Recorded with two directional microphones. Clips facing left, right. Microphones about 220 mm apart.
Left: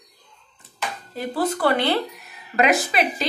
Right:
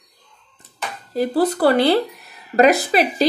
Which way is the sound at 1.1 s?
35° right (ahead or behind).